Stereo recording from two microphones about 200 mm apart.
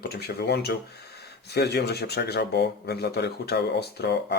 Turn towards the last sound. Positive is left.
turn(degrees=55)  # may be behind; listen again after turning